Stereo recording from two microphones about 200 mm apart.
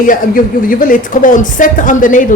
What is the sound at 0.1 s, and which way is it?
Speech, 45° left (ahead or behind).